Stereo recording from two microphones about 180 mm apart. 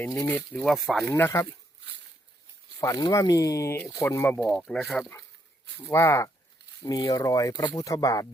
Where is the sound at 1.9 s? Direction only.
75° right (ahead or behind).